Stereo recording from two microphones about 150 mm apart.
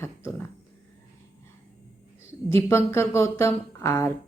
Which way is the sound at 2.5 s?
15° left (ahead or behind).